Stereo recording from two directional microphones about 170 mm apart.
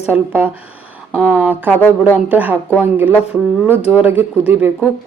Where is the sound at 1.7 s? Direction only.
10° left (ahead or behind).